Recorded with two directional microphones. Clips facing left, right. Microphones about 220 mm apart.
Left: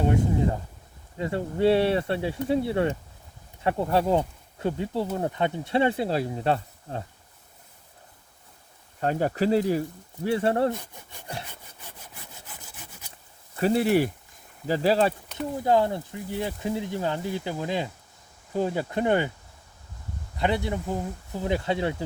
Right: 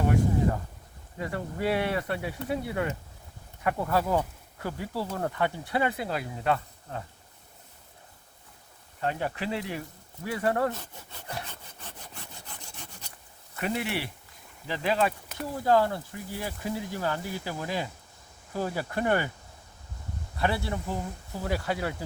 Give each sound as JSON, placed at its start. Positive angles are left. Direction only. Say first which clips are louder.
{"t": 1.2, "sound": "speech", "louder": "left 7 dB", "side_deg": 25}
{"t": 9.0, "sound": "speech", "louder": "left 6 dB", "side_deg": 40}
{"t": 10.7, "sound": "speech", "louder": "left 5 dB", "side_deg": 15}
{"t": 11.8, "sound": "sawing", "louder": "right 1 dB", "side_deg": 10}
{"t": 13.6, "sound": "speech", "louder": "left 9 dB", "side_deg": 35}
{"t": 15.5, "sound": "speech", "louder": "left 1 dB", "side_deg": 20}
{"t": 20.3, "sound": "speech", "louder": "left 3 dB", "side_deg": 20}